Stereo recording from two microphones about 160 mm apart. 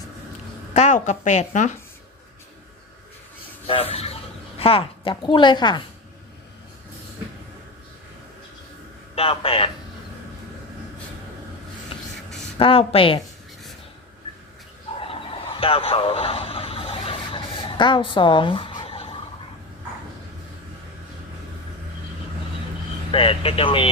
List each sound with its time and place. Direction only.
0.7 s a woman's voice: 45° left (ahead or behind)
3.7 s a woman's voice: 35° left (ahead or behind)
9.1 s speech: 35° left (ahead or behind)
12.5 s speech: 35° left (ahead or behind)
15.0 s a sound: 35° left (ahead or behind)
23.1 s speech: 35° left (ahead or behind)